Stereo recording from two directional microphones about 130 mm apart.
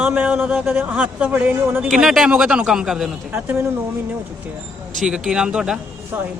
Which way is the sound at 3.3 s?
15° right (ahead or behind).